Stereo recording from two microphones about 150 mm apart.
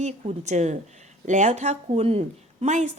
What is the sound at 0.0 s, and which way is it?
A woman's voice, 50° right (ahead or behind).